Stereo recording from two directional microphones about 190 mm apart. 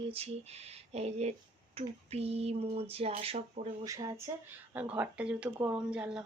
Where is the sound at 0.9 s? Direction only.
35° right (ahead or behind).